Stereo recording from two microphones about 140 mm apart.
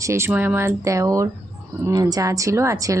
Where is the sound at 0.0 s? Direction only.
20° right (ahead or behind).